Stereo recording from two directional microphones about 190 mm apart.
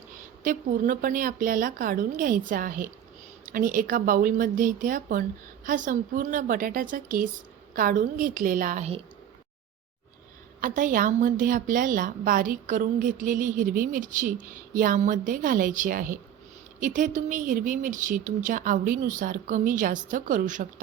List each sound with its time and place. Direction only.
0.4 s a woman's voice: 45° right (ahead or behind)
10.6 s a woman's voice: 45° right (ahead or behind)